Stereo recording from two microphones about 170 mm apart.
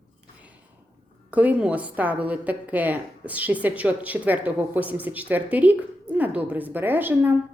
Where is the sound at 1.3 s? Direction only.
10° right (ahead or behind).